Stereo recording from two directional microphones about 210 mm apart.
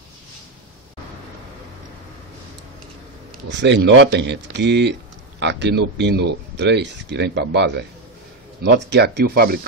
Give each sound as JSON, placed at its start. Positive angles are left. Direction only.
{"t": 3.4, "sound": "speech", "side_deg": -55}